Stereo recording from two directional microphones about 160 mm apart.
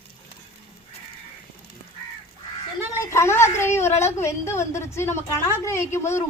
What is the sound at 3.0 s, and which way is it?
A woman's voice, 15° left (ahead or behind).